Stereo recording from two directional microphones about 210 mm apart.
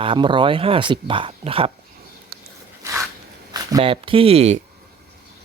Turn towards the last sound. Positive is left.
turn(degrees=-30)  # may be behind; listen again after turning